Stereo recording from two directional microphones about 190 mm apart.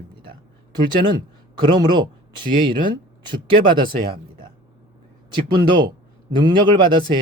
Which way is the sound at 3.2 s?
25° right (ahead or behind).